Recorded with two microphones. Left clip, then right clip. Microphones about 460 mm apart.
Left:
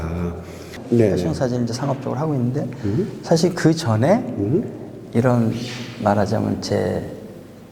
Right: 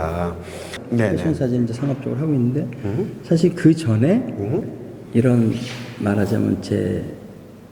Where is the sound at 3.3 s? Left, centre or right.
Left.